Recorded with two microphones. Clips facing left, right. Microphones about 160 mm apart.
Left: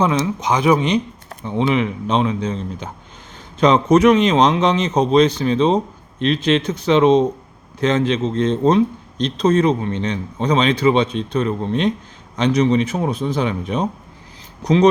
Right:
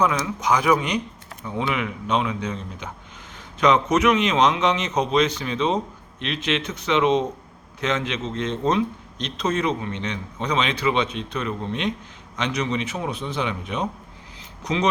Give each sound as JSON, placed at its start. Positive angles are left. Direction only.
{"t": 0.0, "sound": "a man's voice", "side_deg": 25}